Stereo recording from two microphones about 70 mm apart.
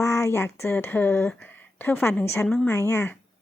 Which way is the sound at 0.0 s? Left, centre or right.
Left.